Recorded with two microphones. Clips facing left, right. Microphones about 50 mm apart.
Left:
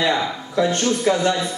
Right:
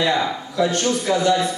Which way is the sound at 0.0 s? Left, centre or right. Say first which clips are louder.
Right 1 dB; left.